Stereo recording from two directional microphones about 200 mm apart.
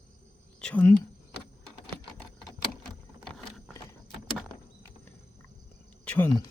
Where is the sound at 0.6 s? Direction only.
5° left (ahead or behind).